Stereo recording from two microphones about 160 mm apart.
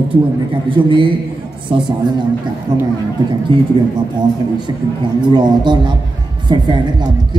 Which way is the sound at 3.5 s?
30° right (ahead or behind).